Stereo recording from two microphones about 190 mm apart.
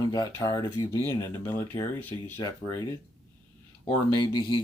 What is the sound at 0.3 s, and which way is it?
Speech, 20° left (ahead or behind).